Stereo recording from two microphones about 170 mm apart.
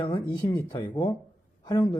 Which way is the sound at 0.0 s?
20° left (ahead or behind).